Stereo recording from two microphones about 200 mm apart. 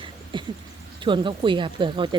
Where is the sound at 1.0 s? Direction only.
25° right (ahead or behind).